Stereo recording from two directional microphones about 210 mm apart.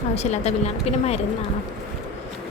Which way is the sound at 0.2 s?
30° left (ahead or behind).